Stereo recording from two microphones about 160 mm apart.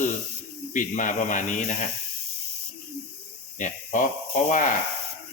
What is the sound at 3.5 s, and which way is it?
Speech, 55° left (ahead or behind).